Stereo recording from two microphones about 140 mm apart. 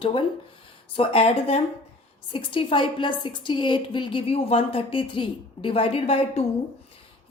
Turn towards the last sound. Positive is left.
turn(degrees=45)  # may be behind; listen again after turning